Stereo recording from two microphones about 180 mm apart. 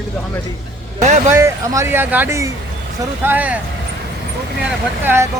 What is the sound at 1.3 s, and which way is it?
A man's voice, 15° right (ahead or behind).